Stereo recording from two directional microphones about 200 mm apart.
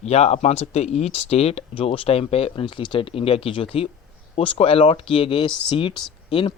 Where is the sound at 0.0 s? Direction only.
30° left (ahead or behind).